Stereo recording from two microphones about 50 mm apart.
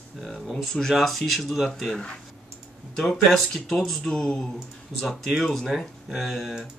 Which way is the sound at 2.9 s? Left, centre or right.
Centre.